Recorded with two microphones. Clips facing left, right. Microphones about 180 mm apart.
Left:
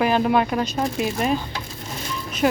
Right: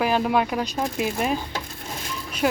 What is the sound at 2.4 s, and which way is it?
Speech, 5° right (ahead or behind).